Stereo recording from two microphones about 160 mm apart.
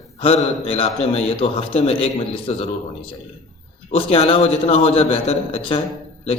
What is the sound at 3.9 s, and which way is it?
A man's voice, 40° left (ahead or behind).